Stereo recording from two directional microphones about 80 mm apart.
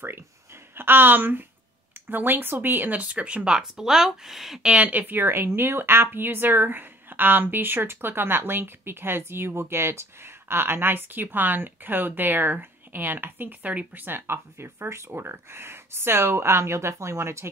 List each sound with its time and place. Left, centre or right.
0.7 s speech: right; by 4.6 s centre
4.6 s speech: centre; by 17.5 s right